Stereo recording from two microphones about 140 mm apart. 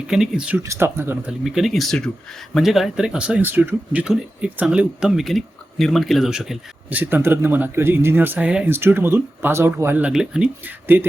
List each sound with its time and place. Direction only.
0.1 s speech: 5° right (ahead or behind)
1.3 s speech: centre (ahead or behind)
7.0 s speech: 15° right (ahead or behind)